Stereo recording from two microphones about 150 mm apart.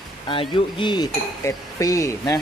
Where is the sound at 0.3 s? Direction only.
35° left (ahead or behind).